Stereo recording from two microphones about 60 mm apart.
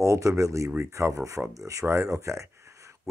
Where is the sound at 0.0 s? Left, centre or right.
Right.